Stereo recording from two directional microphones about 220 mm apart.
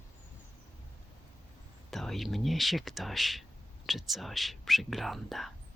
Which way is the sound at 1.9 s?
Centre (ahead or behind).